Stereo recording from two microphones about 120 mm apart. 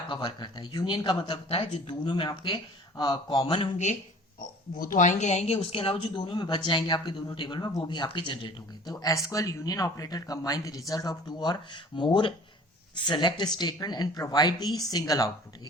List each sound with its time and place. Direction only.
0.1 s a woman's voice: 40° left (ahead or behind)
4.9 s a woman's voice: 85° left; by 15.3 s 30° left (ahead or behind)